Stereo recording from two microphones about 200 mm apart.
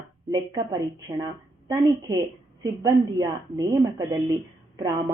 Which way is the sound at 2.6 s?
15° right (ahead or behind).